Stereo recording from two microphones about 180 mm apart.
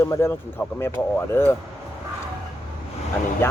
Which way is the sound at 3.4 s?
15° left (ahead or behind).